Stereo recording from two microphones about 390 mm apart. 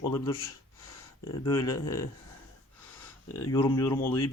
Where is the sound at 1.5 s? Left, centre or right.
Centre.